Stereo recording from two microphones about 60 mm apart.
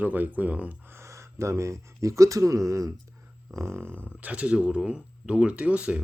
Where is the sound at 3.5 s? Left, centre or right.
Right.